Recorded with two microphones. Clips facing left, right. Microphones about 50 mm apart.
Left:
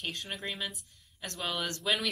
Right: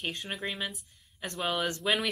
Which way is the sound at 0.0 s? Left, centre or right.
Centre.